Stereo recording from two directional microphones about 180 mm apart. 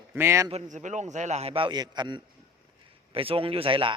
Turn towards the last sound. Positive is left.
turn(degrees=-30)  # may be behind; listen again after turning